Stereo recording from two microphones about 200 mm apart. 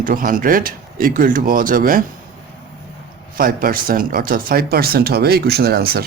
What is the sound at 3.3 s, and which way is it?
Speech, 45° right (ahead or behind).